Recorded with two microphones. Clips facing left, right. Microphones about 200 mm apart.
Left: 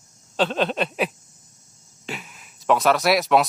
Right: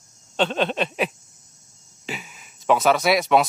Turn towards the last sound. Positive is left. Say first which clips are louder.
# even
turn(degrees=0)  # may be behind; listen again after turning